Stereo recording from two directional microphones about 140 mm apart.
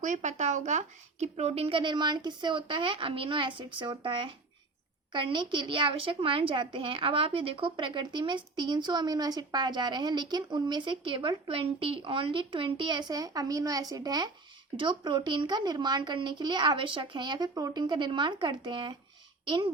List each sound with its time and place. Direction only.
0.0 s a woman's voice: 60° right (ahead or behind); by 19.7 s 40° right (ahead or behind)